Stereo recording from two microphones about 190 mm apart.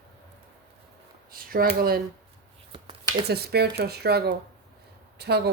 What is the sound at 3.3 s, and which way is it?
Speech, 55° right (ahead or behind).